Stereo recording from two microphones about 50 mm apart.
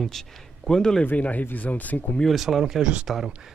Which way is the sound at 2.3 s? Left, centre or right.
Centre.